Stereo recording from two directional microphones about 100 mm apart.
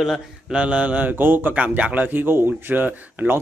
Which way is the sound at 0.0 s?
5° right (ahead or behind).